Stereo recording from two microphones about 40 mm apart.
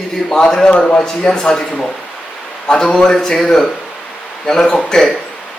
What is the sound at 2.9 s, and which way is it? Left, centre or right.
Speech, centre.